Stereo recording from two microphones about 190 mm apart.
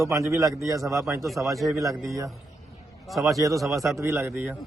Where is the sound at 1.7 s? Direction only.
15° right (ahead or behind).